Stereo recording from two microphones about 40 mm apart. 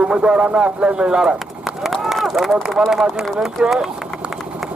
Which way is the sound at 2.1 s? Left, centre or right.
Centre.